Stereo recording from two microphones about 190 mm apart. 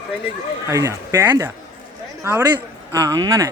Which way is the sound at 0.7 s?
15° right (ahead or behind).